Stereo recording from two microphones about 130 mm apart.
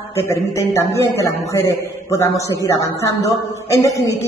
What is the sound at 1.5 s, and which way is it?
A man's voice, 25° left (ahead or behind).